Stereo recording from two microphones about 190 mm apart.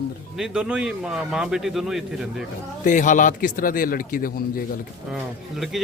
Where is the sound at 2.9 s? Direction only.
40° left (ahead or behind).